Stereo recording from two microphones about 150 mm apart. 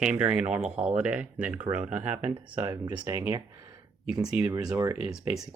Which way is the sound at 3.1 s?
20° right (ahead or behind).